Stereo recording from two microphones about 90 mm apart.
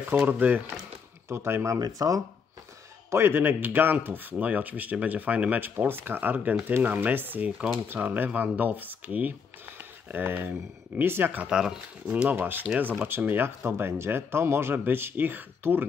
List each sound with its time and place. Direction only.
0.0 s speech: 20° right (ahead or behind)
1.3 s speech: 30° right (ahead or behind)
1.8 s speech: 45° right (ahead or behind)
3.1 s speech: 25° right (ahead or behind)
11.4 s speech: 5° right (ahead or behind); by 15.8 s 25° right (ahead or behind)